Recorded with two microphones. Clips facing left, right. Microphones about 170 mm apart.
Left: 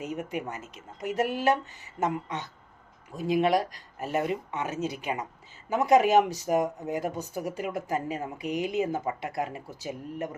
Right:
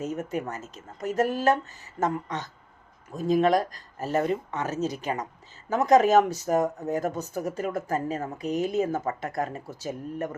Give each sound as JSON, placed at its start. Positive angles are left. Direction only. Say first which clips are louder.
{"t": 0.0, "sound": "speech", "louder": "right 3 dB", "side_deg": 15}
{"t": 0.5, "sound": "speech", "louder": "right 2 dB", "side_deg": -40}
{"t": 0.9, "sound": "speech", "louder": "right 2 dB", "side_deg": 15}
{"t": 1.2, "sound": "speech", "louder": "right 2 dB", "side_deg": -40}
{"t": 3.4, "sound": "speech", "louder": "right 1 dB", "side_deg": 10}
{"t": 3.9, "sound": "speech", "louder": "right 3 dB", "side_deg": -40}
{"t": 6.1, "sound": "speech", "louder": "right 2 dB", "side_deg": 15}